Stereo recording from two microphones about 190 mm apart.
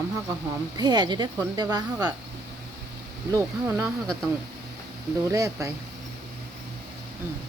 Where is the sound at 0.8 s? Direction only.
20° right (ahead or behind).